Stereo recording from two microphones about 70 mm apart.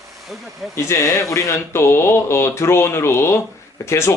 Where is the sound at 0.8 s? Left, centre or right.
Left.